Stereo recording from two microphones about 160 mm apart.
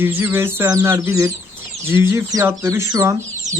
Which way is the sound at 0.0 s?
10° right (ahead or behind).